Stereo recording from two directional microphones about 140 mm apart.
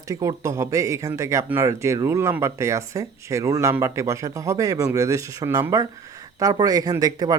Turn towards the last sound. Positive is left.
turn(degrees=-25)  # may be behind; listen again after turning